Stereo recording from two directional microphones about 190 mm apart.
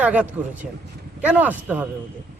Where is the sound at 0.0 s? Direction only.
5° right (ahead or behind).